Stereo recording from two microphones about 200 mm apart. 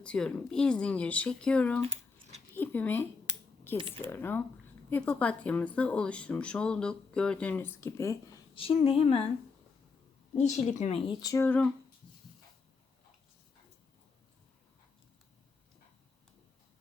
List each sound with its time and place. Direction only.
0.0 s speech: 5° left (ahead or behind)
1.8 s a sound: 30° right (ahead or behind)
2.6 s speech: 10° left (ahead or behind)
3.8 s speech: 25° right (ahead or behind)
4.1 s speech: 10° left (ahead or behind)
8.5 s speech: 30° left (ahead or behind)
10.3 s speech: 35° left (ahead or behind); by 11.7 s 10° left (ahead or behind)